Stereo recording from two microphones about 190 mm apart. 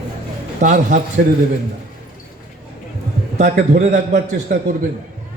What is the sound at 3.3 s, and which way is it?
Speech, 40° right (ahead or behind).